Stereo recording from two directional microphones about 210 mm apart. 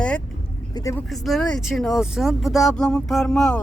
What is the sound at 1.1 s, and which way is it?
Speech, centre (ahead or behind).